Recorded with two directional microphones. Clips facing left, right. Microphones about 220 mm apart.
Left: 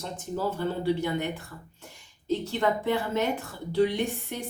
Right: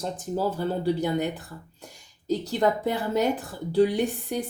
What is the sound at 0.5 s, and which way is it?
Speech, 35° right (ahead or behind).